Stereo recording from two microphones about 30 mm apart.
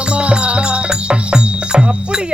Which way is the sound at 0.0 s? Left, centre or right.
Right.